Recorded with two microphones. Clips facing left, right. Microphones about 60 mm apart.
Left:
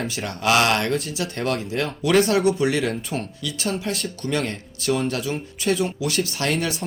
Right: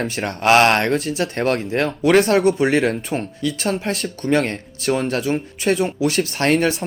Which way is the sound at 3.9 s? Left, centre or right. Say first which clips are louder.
Right 6 dB; right.